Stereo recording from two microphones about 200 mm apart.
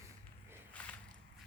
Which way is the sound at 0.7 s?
5° left (ahead or behind).